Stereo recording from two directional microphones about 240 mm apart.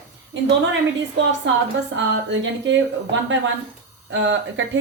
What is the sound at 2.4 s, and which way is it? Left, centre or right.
A woman's voice, right.